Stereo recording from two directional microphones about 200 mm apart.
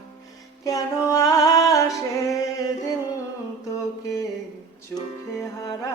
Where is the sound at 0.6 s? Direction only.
15° left (ahead or behind).